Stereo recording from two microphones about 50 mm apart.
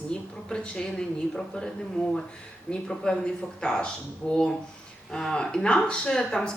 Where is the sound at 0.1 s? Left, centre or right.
Centre.